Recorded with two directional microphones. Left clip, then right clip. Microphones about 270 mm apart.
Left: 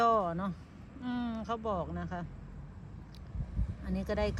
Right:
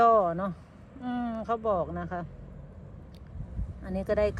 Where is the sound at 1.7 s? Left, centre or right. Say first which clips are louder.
Right 7 dB; right.